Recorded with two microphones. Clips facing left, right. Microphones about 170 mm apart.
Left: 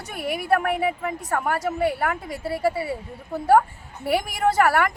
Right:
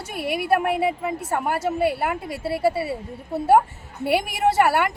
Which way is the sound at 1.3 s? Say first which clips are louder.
Even; 25° right (ahead or behind).